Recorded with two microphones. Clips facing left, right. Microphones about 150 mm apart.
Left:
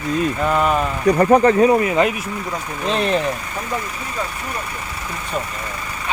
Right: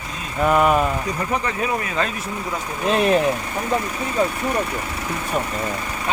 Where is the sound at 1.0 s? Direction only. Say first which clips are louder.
Left 11 dB; 60° left (ahead or behind).